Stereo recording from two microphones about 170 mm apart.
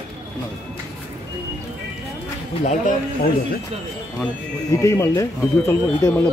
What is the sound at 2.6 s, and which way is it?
Speech, 40° left (ahead or behind).